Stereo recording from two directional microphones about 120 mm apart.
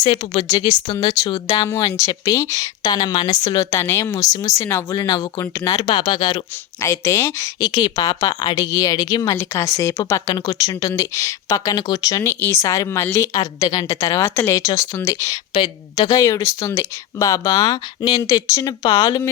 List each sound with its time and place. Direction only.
0.0 s a woman's voice: 40° left (ahead or behind)
1.6 s a woman's voice: 25° left (ahead or behind)
5.8 s a woman's voice: 40° left (ahead or behind)
6.8 s speech: 25° left (ahead or behind)
15.5 s a woman's voice: 40° left (ahead or behind)